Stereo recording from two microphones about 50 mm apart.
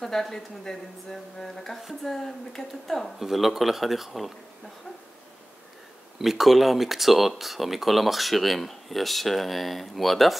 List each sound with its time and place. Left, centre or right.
0.0 s speech: centre
3.2 s speech: centre
6.1 s speech: centre